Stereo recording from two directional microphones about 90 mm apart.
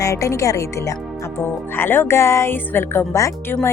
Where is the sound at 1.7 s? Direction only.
25° left (ahead or behind).